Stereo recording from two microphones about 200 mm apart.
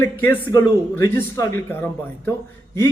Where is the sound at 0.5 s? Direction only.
15° left (ahead or behind).